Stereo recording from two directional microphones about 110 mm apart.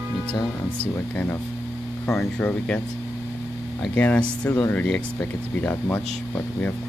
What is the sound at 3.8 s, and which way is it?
Speech, 10° left (ahead or behind).